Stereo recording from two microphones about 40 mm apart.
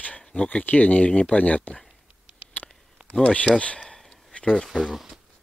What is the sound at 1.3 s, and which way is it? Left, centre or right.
Speech, left.